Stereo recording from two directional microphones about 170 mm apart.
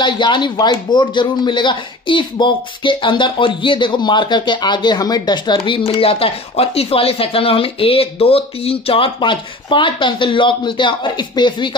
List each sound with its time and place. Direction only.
0.0 s speech: 30° left (ahead or behind)